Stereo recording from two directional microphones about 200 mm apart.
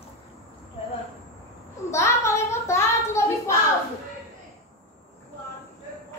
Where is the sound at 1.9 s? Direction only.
15° left (ahead or behind).